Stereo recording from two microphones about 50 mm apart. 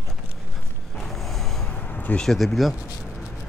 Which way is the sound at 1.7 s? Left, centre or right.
Left.